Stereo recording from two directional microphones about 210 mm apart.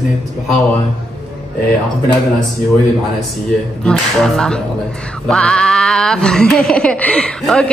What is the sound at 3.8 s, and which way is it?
Speech, 5° left (ahead or behind).